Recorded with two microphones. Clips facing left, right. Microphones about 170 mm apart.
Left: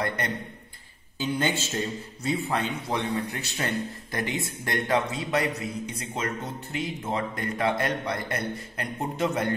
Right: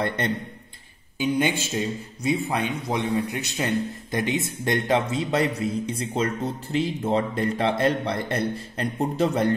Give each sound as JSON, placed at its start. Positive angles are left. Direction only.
{"t": 1.1, "sound": "a man's voice", "side_deg": -15}